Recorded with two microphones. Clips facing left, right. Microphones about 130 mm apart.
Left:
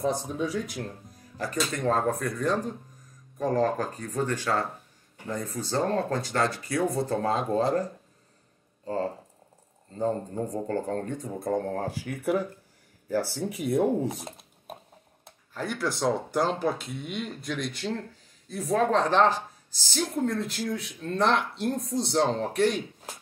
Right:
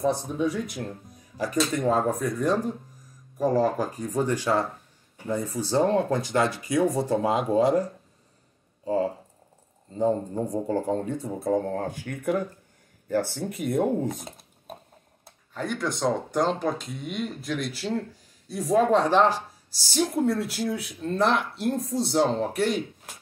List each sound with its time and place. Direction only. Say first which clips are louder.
0.4 s speech: right 3 dB; centre (ahead or behind)
1.4 s speech: right 4 dB; 15° right (ahead or behind); by 14.2 s 5° left (ahead or behind)
15.5 s speech: right 1 dB; centre (ahead or behind)